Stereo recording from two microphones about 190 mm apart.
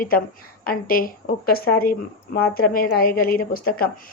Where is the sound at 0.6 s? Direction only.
50° left (ahead or behind).